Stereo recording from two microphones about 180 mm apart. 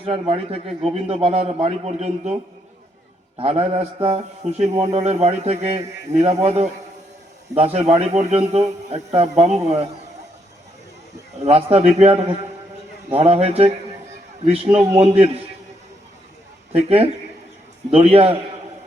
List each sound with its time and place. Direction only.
0.0 s a man's voice: 30° right (ahead or behind)
11.4 s a man's voice: 35° right (ahead or behind)
17.9 s a man's voice: 35° right (ahead or behind)